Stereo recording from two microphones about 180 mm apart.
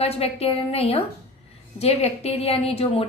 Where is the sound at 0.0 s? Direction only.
35° left (ahead or behind).